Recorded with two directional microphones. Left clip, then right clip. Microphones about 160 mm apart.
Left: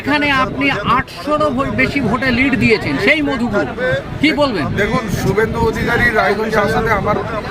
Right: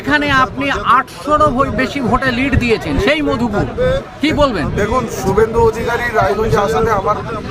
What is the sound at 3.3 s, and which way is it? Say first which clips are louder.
Speech: even; 45° right (ahead or behind).